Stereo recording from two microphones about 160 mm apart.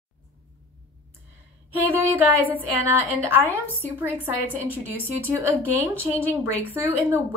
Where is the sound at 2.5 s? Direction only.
15° right (ahead or behind).